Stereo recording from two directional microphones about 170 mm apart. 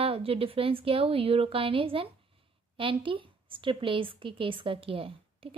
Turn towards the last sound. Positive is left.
turn(degrees=-35)  # may be behind; listen again after turning